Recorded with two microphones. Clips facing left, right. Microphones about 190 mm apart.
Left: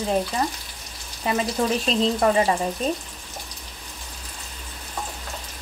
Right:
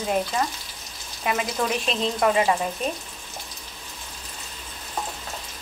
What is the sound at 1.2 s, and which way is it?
Speech, 30° left (ahead or behind).